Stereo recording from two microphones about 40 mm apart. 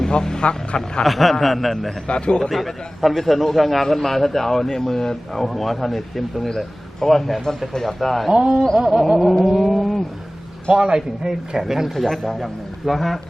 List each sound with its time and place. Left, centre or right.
0.0 s speech: centre
1.0 s a man's voice: centre
2.0 s speech: left
2.5 s a man's voice: centre
8.3 s a sound: centre
8.7 s a man's voice: centre
9.0 s a man's voice: centre
9.4 s vehicle: centre
10.7 s a man's voice: right
11.9 s a man's voice: centre